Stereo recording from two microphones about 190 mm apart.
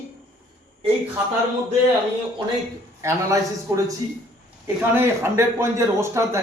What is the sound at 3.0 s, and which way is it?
Speech, 15° right (ahead or behind).